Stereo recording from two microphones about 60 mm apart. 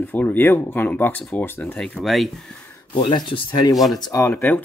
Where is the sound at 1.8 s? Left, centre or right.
Centre.